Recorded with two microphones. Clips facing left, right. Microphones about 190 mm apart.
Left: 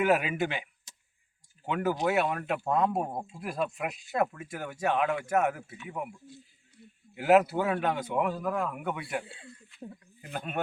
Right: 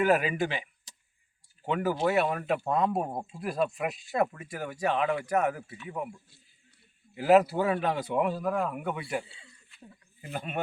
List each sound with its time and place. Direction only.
0.0 s speech: centre (ahead or behind)
9.2 s speech: 55° left (ahead or behind)
10.2 s speech: centre (ahead or behind)